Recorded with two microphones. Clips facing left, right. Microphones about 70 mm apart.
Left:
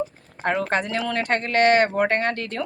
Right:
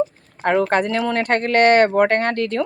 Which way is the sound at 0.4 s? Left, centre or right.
Right.